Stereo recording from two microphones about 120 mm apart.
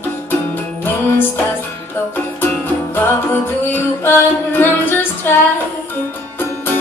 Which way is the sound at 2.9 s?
20° left (ahead or behind).